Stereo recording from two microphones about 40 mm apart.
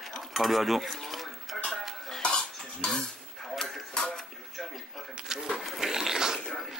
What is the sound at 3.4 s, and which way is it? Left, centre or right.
Music, centre.